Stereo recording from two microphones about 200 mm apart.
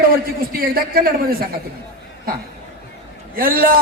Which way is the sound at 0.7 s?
45° right (ahead or behind).